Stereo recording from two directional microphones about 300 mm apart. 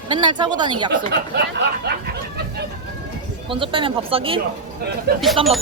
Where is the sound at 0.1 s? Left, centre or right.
Centre.